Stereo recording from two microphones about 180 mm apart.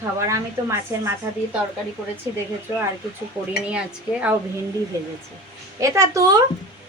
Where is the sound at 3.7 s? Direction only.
5° right (ahead or behind).